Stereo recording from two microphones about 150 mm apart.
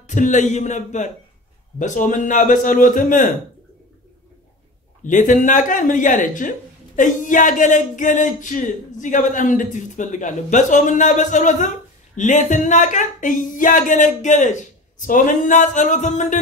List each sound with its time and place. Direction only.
0.0 s a man's voice: 55° left (ahead or behind)
5.0 s speech: 60° left (ahead or behind)